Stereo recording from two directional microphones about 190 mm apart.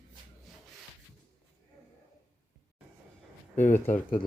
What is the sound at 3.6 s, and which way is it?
Speech, 10° left (ahead or behind).